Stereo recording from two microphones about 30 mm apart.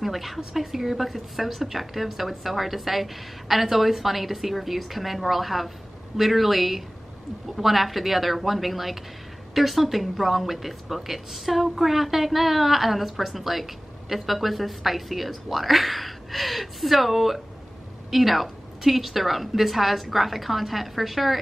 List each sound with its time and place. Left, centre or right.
0.0 s a woman's voice: centre